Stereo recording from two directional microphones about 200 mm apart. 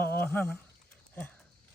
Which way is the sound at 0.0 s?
10° left (ahead or behind).